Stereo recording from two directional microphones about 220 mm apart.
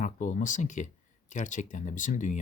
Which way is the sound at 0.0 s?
35° left (ahead or behind).